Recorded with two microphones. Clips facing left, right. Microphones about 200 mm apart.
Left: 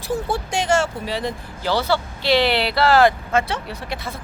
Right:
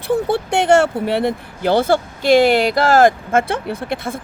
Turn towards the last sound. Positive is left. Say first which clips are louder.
# right 7 dB
turn(degrees=-50)  # may be behind; listen again after turning